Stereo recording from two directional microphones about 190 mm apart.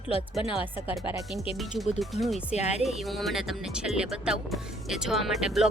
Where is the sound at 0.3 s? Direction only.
10° right (ahead or behind).